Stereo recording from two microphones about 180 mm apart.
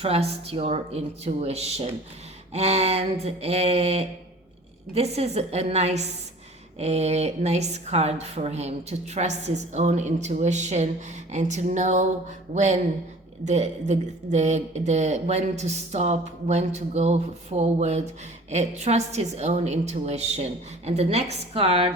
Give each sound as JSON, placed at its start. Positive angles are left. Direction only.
{"t": 0.0, "sound": "speech", "side_deg": -35}